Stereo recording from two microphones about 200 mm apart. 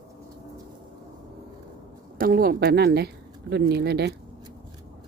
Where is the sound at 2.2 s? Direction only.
45° right (ahead or behind).